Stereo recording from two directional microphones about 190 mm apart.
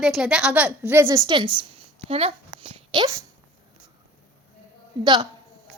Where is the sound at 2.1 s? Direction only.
30° right (ahead or behind).